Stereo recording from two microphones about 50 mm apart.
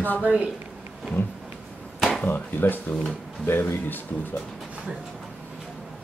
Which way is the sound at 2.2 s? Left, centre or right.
Left.